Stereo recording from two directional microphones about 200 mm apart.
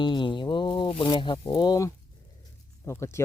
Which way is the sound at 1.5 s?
20° left (ahead or behind).